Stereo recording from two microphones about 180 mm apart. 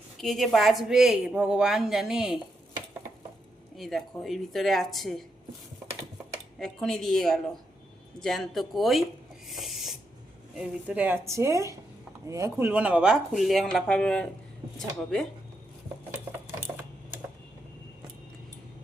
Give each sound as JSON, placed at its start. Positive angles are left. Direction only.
{"t": 0.2, "sound": "a woman's voice", "side_deg": 0}
{"t": 3.8, "sound": "a woman's voice", "side_deg": 0}
{"t": 6.6, "sound": "a woman's voice", "side_deg": 0}
{"t": 9.5, "sound": "a sound", "side_deg": 0}
{"t": 10.6, "sound": "a woman's voice", "side_deg": -5}